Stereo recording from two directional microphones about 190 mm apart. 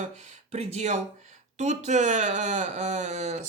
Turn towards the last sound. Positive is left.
turn(degrees=-40)  # may be behind; listen again after turning